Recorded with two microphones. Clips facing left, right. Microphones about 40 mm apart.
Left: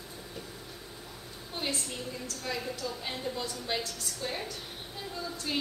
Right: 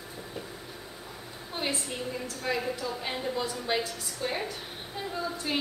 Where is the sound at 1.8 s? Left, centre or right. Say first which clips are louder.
Right 4 dB; centre.